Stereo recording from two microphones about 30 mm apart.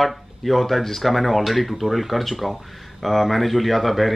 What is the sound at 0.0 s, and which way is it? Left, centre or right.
Speech, centre.